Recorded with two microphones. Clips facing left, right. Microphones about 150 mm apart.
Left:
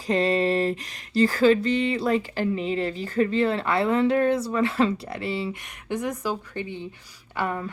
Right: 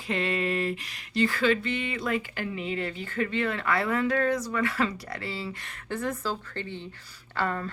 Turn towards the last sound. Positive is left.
turn(degrees=15)  # may be behind; listen again after turning